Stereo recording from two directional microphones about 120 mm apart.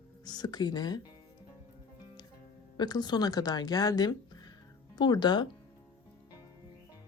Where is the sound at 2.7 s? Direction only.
35° left (ahead or behind).